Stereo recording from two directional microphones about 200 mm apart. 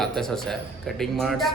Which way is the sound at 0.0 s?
Centre (ahead or behind).